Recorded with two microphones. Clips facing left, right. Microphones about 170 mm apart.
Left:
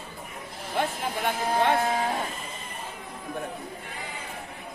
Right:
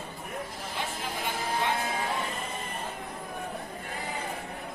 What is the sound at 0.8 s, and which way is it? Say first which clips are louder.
Music: left 7 dB; 55° left (ahead or behind).